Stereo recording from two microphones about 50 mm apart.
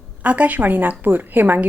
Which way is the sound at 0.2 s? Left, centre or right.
Right.